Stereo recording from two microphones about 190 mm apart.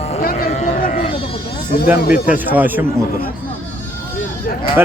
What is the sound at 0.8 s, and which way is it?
Speech, 50° left (ahead or behind).